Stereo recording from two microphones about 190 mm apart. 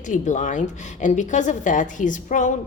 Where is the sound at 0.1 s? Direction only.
40° left (ahead or behind).